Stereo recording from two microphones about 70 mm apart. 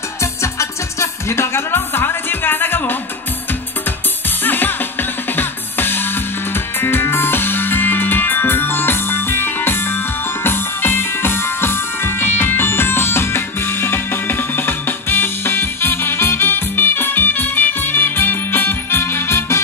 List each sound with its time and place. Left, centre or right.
0.2 s music: left
4.4 s music: left